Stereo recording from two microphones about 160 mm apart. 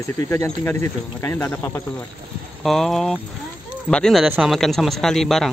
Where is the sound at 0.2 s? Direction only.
15° left (ahead or behind).